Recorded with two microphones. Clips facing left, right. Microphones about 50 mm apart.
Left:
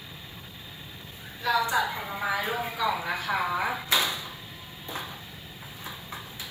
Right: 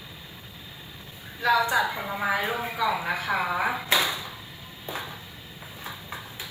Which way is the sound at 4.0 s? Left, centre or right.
Right.